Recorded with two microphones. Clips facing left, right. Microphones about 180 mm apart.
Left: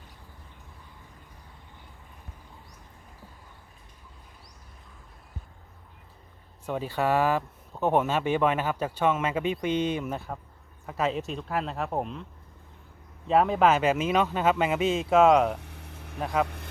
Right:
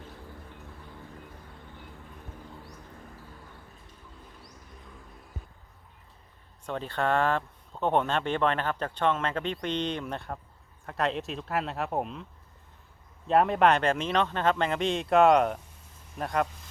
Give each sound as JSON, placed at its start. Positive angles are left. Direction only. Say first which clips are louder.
{"t": 6.7, "sound": "speech", "louder": "left 2 dB", "side_deg": 10}
{"t": 13.2, "sound": "speech", "louder": "left 1 dB", "side_deg": 0}
{"t": 15.5, "sound": "a sound", "louder": "left 5 dB", "side_deg": 70}
{"t": 16.1, "sound": "speech", "louder": "left 1 dB", "side_deg": 5}